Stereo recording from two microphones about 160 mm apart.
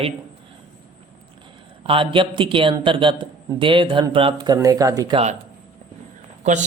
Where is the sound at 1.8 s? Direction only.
35° right (ahead or behind).